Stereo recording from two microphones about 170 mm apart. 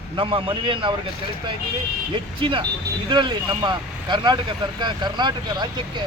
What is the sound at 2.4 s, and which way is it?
Speech, 30° right (ahead or behind).